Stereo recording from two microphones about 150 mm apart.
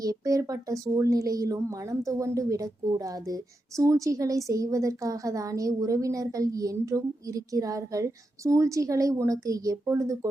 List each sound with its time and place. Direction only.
0.0 s speech: 25° right (ahead or behind)